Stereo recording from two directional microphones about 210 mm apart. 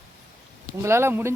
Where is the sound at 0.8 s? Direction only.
10° right (ahead or behind).